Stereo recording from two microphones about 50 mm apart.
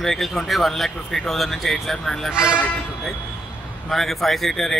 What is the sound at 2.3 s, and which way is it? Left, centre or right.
Speech, centre.